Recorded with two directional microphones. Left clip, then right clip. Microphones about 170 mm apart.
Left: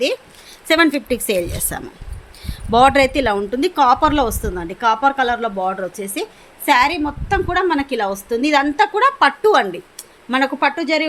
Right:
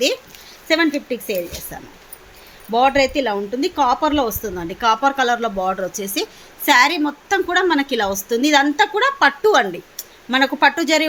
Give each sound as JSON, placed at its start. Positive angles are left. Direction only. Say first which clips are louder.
{"t": 0.9, "sound": "a woman's voice", "louder": "left 4 dB", "side_deg": 30}